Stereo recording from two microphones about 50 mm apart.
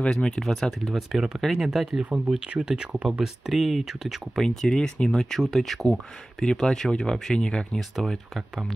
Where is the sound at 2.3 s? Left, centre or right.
Centre.